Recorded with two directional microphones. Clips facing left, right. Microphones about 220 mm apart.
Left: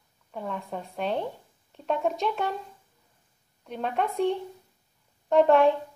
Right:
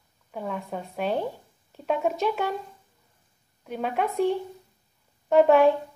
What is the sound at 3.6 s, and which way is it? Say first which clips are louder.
A woman's voice: right 1 dB; 5° right (ahead or behind).